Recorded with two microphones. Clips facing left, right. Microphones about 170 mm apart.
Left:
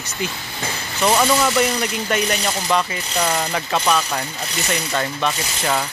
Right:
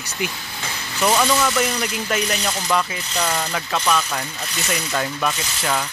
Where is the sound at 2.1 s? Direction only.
Centre (ahead or behind).